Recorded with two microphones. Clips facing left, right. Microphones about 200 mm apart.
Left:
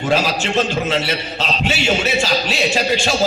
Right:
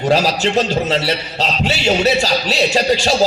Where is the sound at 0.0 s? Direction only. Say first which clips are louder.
Right 3 dB; 40° right (ahead or behind).